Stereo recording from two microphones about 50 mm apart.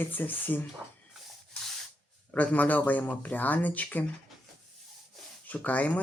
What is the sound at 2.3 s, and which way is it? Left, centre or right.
Speech, left.